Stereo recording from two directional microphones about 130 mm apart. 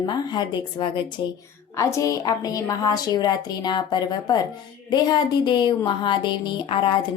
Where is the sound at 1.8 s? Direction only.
25° left (ahead or behind).